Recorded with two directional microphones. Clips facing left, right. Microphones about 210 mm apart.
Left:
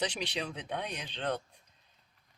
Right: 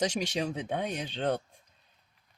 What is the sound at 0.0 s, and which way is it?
Speech, 45° right (ahead or behind).